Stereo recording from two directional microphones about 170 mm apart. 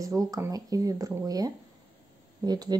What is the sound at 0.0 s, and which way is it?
Speech, 20° right (ahead or behind).